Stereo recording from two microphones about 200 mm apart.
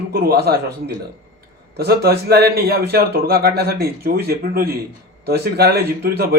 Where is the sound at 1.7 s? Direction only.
50° right (ahead or behind).